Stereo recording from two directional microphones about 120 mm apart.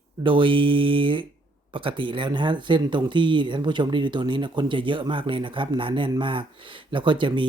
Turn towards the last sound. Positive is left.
turn(degrees=-40)  # may be behind; listen again after turning